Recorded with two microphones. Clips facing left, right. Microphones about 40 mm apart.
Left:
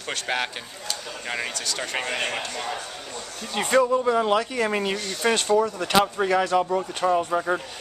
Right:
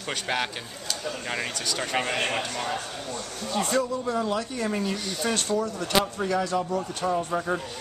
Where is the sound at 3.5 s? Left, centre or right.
Left.